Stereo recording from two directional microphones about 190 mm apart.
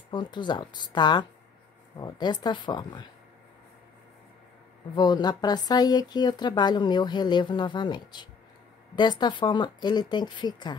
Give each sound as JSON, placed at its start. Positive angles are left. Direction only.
{"t": 0.1, "sound": "speech", "side_deg": 25}
{"t": 4.9, "sound": "speech", "side_deg": 20}